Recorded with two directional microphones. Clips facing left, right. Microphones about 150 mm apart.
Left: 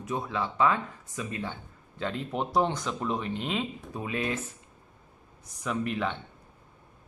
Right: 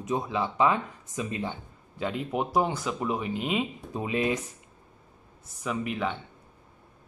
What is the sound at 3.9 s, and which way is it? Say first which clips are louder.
Speech: right 5 dB; 20° right (ahead or behind).